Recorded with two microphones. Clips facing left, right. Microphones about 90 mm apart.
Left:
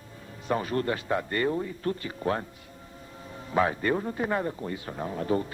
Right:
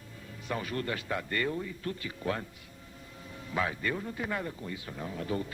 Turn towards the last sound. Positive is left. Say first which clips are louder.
# left 6 dB
turn(degrees=35)  # may be behind; listen again after turning